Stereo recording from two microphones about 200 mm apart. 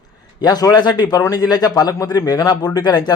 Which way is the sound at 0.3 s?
20° left (ahead or behind).